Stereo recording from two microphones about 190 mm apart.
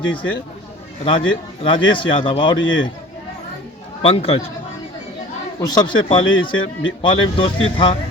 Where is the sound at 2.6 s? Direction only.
85° left.